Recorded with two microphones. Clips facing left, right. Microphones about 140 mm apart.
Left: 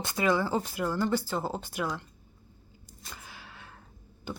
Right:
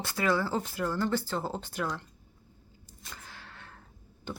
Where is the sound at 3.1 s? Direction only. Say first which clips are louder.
Left 1 dB; 10° left (ahead or behind).